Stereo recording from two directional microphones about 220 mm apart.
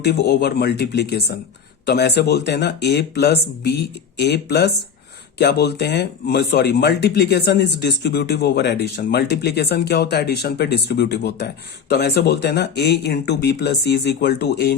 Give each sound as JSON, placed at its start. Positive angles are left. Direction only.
{"t": 0.0, "sound": "speech", "side_deg": 45}